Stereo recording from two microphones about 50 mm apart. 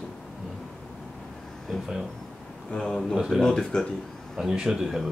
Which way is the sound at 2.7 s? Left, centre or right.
Centre.